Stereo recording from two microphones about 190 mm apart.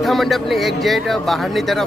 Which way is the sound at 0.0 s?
Centre (ahead or behind).